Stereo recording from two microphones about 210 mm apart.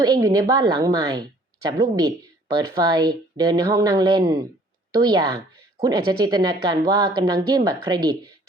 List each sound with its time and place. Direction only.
0.0 s a woman's voice: 15° right (ahead or behind)